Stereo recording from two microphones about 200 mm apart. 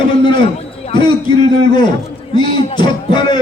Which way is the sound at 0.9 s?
25° left (ahead or behind).